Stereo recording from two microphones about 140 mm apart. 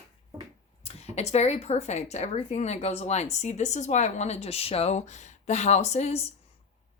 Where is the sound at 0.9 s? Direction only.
50° left (ahead or behind).